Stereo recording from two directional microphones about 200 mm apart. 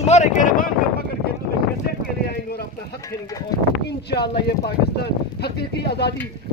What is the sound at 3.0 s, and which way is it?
Speech, 15° left (ahead or behind).